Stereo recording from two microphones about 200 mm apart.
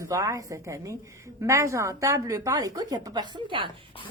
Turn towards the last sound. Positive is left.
turn(degrees=-25)  # may be behind; listen again after turning